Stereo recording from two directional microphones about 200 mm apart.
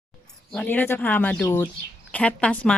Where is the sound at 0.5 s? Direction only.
10° left (ahead or behind).